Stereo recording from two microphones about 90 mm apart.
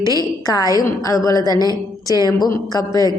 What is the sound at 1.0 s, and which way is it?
Speech, 40° left (ahead or behind).